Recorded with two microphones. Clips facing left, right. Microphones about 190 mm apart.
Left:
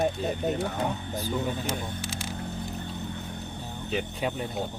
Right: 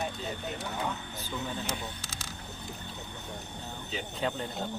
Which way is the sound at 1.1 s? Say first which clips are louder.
Left 7 dB; 15° left (ahead or behind).